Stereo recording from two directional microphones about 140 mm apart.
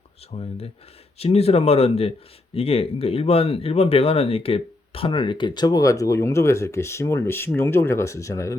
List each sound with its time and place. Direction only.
0.3 s speech: 45° left (ahead or behind); by 8.5 s 20° left (ahead or behind)